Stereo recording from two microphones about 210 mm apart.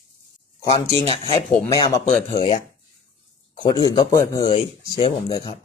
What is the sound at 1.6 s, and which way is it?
Speech, 15° left (ahead or behind).